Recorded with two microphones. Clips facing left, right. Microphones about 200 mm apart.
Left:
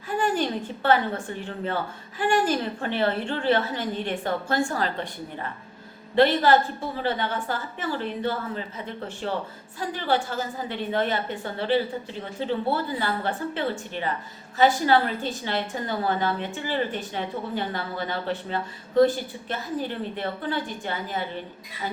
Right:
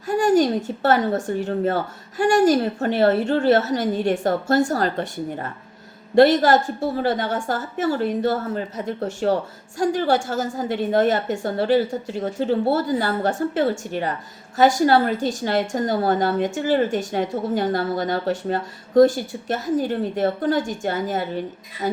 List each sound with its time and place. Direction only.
0.1 s a woman's voice: 45° right (ahead or behind)
21.8 s music: 40° right (ahead or behind)